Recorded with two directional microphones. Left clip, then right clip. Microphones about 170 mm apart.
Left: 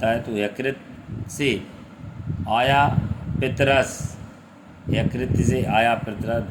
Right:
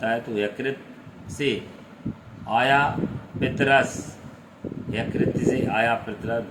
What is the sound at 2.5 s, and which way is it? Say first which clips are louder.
Speech: left 1 dB; 55° left (ahead or behind).